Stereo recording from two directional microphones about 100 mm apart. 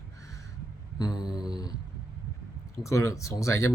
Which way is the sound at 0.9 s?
40° left (ahead or behind).